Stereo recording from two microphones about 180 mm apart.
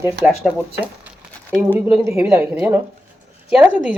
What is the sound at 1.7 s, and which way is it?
A woman's voice, 10° right (ahead or behind).